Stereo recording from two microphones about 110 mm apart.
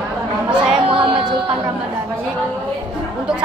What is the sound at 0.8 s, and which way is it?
Music, 55° right (ahead or behind).